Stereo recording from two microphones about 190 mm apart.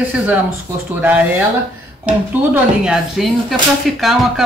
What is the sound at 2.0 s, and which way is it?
Speech, 5° right (ahead or behind).